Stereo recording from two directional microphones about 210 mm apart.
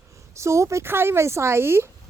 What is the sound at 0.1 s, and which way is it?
Speech, 15° right (ahead or behind).